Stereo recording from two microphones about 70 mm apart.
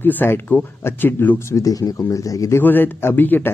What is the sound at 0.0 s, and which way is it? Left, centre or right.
Speech, left.